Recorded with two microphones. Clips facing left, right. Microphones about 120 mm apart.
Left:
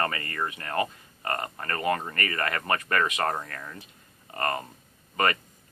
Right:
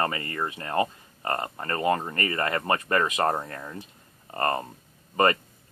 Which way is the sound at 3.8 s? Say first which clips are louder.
Right 3 dB; 30° right (ahead or behind).